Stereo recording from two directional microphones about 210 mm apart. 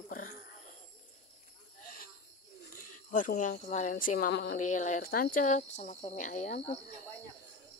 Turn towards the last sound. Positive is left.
turn(degrees=30)  # may be behind; listen again after turning